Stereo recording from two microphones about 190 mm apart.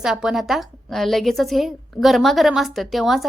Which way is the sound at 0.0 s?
5° right (ahead or behind).